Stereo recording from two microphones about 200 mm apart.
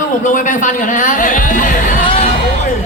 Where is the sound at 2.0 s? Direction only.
25° left (ahead or behind).